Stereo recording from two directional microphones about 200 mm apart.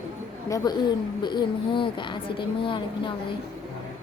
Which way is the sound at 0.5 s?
20° left (ahead or behind).